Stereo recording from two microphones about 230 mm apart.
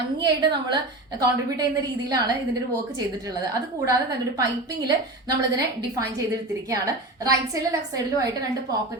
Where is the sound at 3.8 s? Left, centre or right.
Centre.